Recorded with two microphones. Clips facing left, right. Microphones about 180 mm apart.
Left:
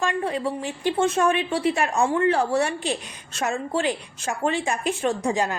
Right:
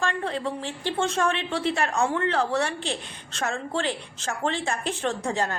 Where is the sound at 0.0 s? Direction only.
15° left (ahead or behind).